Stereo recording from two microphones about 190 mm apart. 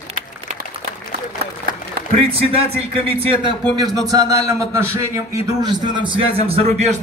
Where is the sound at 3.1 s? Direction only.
30° right (ahead or behind).